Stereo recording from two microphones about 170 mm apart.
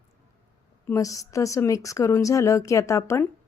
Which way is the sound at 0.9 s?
20° left (ahead or behind).